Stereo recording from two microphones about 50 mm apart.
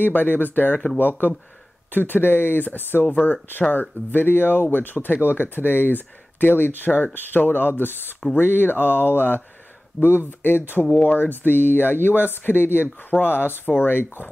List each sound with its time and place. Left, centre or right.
0.0 s speech: left